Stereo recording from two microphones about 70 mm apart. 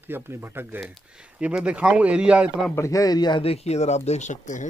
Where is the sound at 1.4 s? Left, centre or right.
Centre.